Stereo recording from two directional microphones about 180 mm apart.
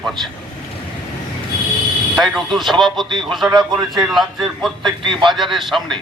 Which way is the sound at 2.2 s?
Centre (ahead or behind).